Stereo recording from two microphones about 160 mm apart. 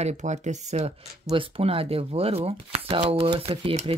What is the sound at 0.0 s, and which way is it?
Speech, 45° right (ahead or behind).